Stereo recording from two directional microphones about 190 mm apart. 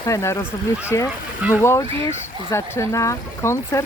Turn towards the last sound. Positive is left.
turn(degrees=15)  # may be behind; listen again after turning